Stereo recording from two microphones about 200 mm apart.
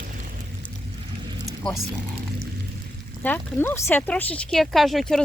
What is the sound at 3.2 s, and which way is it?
Speech, 10° left (ahead or behind).